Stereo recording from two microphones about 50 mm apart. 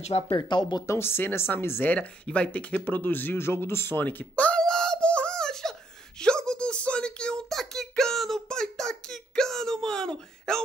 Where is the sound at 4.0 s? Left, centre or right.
Left.